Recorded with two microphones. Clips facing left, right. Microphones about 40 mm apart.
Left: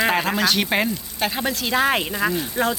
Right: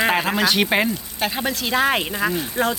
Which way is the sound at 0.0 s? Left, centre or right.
Centre.